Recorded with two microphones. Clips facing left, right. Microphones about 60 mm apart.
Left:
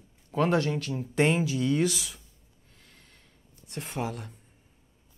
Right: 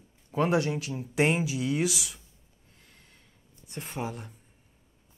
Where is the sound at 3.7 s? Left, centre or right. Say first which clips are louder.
Left 2 dB; centre.